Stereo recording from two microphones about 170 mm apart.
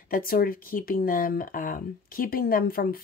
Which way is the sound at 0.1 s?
60° left (ahead or behind).